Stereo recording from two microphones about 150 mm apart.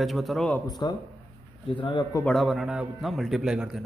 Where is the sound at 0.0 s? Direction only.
Centre (ahead or behind).